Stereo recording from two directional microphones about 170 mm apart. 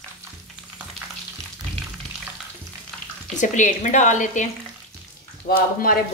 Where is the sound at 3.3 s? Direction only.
45° left (ahead or behind).